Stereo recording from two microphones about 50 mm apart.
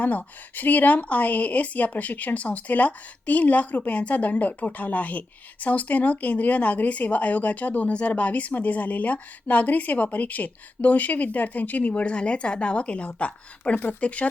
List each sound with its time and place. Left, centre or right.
0.0 s a woman's voice: left